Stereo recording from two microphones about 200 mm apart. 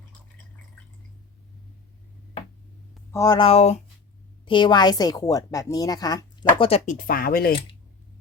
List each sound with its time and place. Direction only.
3.1 s a woman's voice: 15° left (ahead or behind)
6.9 s speech: 45° left (ahead or behind)